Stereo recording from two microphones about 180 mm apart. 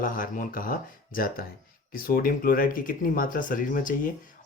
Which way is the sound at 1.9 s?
55° left (ahead or behind).